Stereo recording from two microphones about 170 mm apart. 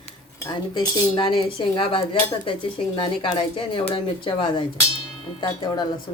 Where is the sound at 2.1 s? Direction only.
30° left (ahead or behind).